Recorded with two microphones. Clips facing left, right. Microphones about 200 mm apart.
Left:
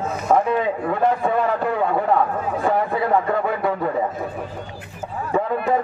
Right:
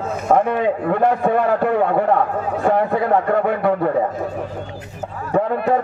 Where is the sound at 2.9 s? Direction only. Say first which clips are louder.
Right 3 dB; 60° right (ahead or behind).